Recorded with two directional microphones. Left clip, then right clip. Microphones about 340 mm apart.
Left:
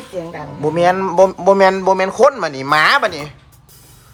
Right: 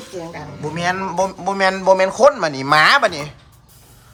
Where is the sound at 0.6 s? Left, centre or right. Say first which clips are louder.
Left 7 dB; centre.